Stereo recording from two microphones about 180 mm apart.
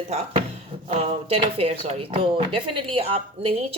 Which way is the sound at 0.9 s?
35° right (ahead or behind).